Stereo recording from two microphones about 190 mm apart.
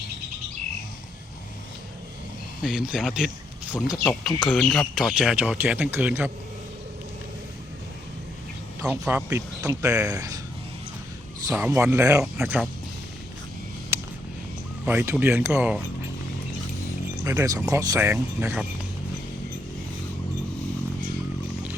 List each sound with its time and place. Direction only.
2.6 s speech: 5° right (ahead or behind)
8.9 s speech: 10° right (ahead or behind)
11.4 s speech: 15° right (ahead or behind)
13.9 s a sound: 15° right (ahead or behind)
14.8 s speech: 10° right (ahead or behind)
17.2 s speech: 15° right (ahead or behind)